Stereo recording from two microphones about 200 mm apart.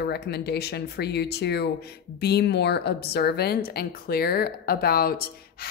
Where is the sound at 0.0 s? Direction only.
55° left (ahead or behind).